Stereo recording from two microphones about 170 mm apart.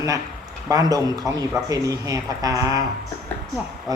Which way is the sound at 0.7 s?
20° right (ahead or behind).